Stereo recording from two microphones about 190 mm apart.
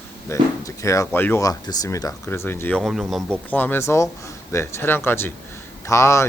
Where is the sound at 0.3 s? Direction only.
15° left (ahead or behind).